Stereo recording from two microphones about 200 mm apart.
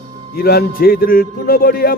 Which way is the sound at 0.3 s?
50° left (ahead or behind).